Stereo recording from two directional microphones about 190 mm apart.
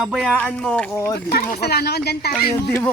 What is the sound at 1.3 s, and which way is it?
Speech, 55° left (ahead or behind).